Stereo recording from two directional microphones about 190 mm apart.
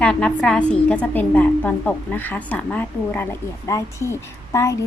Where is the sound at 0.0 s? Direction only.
5° left (ahead or behind).